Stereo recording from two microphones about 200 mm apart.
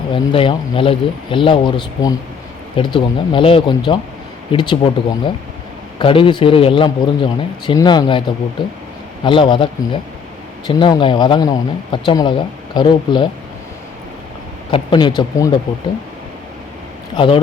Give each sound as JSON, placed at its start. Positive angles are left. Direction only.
{"t": 0.1, "sound": "speech", "side_deg": 25}
{"t": 14.7, "sound": "speech", "side_deg": 25}
{"t": 17.2, "sound": "speech", "side_deg": 25}